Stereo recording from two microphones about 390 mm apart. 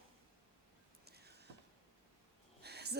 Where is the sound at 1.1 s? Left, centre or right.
Right.